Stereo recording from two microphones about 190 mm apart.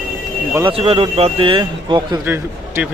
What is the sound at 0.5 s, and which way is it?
Speech, 25° right (ahead or behind).